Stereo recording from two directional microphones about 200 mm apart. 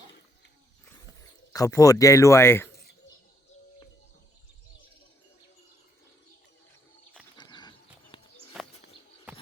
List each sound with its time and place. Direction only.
1.5 s speech: 15° left (ahead or behind)
7.3 s horse: 20° left (ahead or behind)
8.1 s a sound: 25° left (ahead or behind)
8.6 s bird: 5° right (ahead or behind)